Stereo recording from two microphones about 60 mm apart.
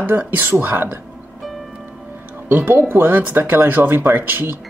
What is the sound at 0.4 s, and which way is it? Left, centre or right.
Speech, right.